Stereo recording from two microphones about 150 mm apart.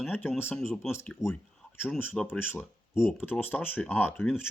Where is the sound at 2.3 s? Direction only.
15° left (ahead or behind).